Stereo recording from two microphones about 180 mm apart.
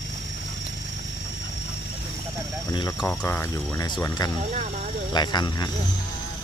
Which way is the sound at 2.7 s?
20° left (ahead or behind).